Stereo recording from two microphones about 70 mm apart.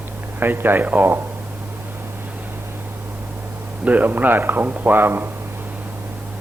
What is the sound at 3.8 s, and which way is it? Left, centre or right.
Speech, right.